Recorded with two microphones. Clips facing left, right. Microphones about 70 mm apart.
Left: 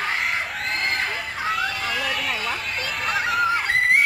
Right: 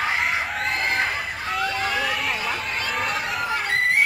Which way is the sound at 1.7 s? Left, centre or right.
Centre.